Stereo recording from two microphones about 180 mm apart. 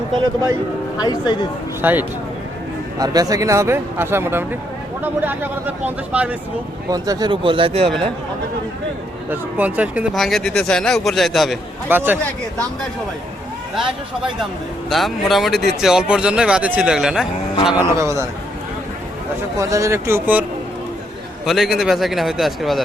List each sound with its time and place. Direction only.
0.9 s speech: 20° left (ahead or behind)
1.8 s speech: 10° right (ahead or behind)
6.9 s speech: 20° right (ahead or behind)
9.3 s speech: 10° right (ahead or behind)
11.9 s speech: 10° right (ahead or behind)
13.7 s speech: centre (ahead or behind)
17.9 s speech: 15° right (ahead or behind)
19.5 s speech: 15° right (ahead or behind)
21.4 s speech: centre (ahead or behind)